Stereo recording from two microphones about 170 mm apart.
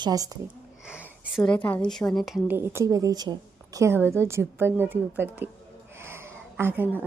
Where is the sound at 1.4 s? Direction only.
10° left (ahead or behind).